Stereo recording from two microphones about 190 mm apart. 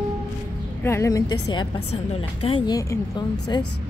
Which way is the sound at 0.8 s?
15° left (ahead or behind).